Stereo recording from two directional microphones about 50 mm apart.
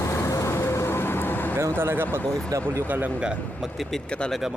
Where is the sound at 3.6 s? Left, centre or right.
Centre.